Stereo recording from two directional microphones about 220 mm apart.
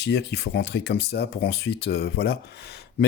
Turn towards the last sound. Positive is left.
turn(degrees=50)  # may be behind; listen again after turning